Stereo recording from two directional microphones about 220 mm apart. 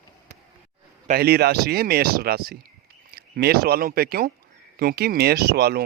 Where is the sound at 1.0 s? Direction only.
45° right (ahead or behind).